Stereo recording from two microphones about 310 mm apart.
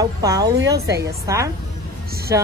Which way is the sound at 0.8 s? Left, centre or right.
Right.